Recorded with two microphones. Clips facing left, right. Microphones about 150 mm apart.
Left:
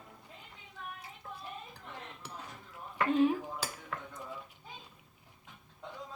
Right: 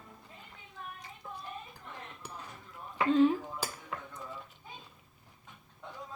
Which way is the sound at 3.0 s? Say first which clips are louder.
Right 3 dB; 10° left (ahead or behind).